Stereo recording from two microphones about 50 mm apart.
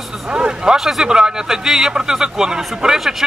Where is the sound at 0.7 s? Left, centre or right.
Centre.